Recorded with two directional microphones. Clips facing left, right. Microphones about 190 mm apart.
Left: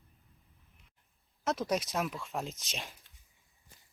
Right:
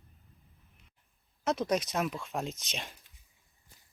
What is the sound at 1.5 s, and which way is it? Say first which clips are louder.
Speech: right 2 dB; centre (ahead or behind).